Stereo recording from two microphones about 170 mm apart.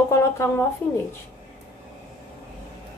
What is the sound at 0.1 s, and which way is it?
Speech, 15° left (ahead or behind).